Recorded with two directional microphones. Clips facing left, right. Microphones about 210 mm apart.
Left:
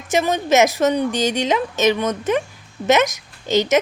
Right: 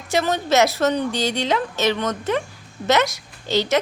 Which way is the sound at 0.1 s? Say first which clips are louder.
Left 2 dB; 15° left (ahead or behind).